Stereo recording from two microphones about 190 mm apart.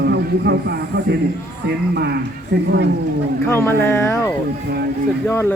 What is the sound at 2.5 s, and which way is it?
Speech, 55° right (ahead or behind).